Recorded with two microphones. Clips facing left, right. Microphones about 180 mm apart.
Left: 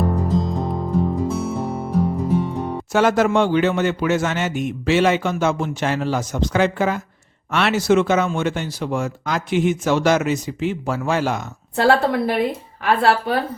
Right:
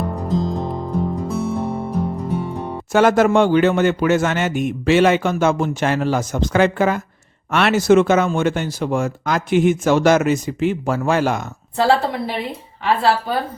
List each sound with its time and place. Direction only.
0.2 s music: centre (ahead or behind)
2.9 s speech: 50° right (ahead or behind)
11.8 s a woman's voice: 55° left (ahead or behind)